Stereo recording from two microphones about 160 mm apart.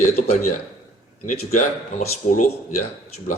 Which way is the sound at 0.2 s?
40° left (ahead or behind).